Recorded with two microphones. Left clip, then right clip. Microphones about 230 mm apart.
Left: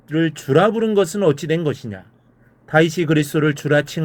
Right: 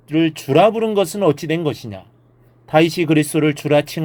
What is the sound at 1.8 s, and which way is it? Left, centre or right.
Speech, right.